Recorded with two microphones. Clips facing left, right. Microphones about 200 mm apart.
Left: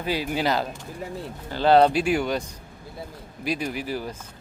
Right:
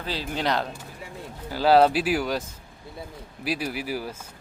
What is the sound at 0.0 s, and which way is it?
Speech, 10° left (ahead or behind).